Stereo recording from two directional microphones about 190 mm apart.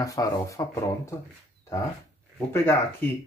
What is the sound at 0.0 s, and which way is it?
Speech, 20° left (ahead or behind).